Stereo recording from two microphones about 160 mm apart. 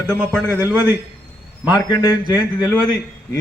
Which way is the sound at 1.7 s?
25° left (ahead or behind).